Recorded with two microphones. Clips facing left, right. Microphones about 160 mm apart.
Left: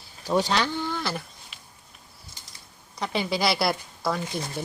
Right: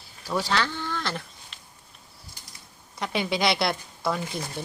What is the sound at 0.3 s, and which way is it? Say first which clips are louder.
Speech: left 3 dB; 20° left (ahead or behind).